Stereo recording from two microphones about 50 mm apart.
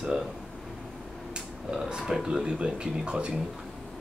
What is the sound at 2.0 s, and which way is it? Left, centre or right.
Speech, centre.